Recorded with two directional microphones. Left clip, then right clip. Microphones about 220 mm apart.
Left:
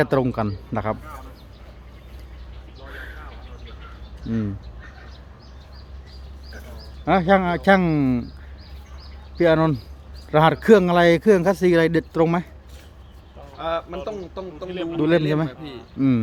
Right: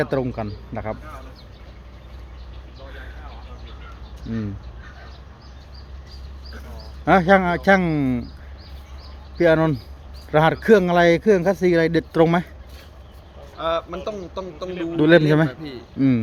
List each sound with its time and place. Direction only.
0.0 s a man's voice: 20° left (ahead or behind)
7.0 s a man's voice: centre (ahead or behind)
9.4 s a man's voice: 10° left (ahead or behind)
13.6 s a man's voice: 25° right (ahead or behind)
14.9 s a man's voice: 10° right (ahead or behind)
15.2 s a man's voice: 20° right (ahead or behind)
16.0 s speech: centre (ahead or behind)